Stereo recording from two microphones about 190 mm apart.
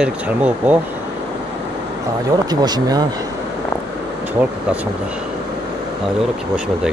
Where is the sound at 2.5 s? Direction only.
20° right (ahead or behind).